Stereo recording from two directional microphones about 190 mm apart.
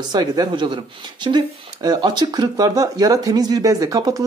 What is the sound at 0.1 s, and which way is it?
Speech, 25° right (ahead or behind).